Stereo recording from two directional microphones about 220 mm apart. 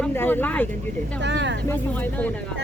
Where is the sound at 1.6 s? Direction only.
10° left (ahead or behind).